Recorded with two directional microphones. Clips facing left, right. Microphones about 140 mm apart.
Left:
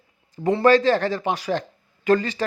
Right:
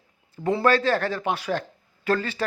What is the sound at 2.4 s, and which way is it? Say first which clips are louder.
Speech: left 2 dB; 10° left (ahead or behind).